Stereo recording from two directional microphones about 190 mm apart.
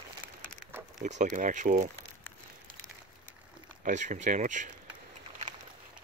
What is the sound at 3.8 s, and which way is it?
Speech, 40° right (ahead or behind).